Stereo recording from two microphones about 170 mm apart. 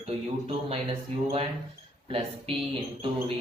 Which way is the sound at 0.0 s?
35° right (ahead or behind).